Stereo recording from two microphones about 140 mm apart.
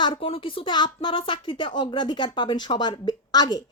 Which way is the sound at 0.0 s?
40° left (ahead or behind).